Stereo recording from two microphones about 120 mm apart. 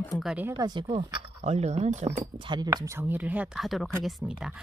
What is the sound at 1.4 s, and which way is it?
Speech, 65° right (ahead or behind).